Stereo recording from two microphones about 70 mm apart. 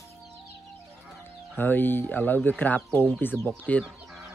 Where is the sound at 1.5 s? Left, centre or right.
Left.